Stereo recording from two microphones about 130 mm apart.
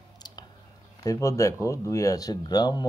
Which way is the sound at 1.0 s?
25° left (ahead or behind).